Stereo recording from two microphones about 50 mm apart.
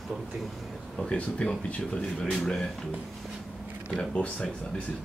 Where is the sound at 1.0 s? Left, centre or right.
Centre.